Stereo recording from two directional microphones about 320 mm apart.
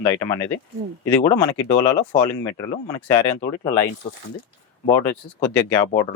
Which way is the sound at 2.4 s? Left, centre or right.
Centre.